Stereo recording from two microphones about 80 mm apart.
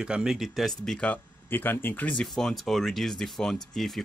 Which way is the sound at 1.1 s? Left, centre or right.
Left.